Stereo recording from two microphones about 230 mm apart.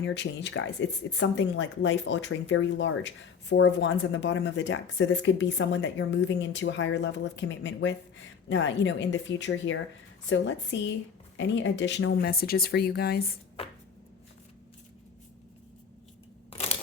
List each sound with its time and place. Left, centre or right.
0.0 s speech: left
13.6 s chopping: left
16.5 s a sound: left